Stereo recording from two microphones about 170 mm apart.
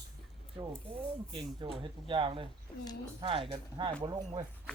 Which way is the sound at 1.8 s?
30° right (ahead or behind).